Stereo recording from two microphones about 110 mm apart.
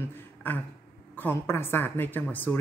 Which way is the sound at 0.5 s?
15° left (ahead or behind).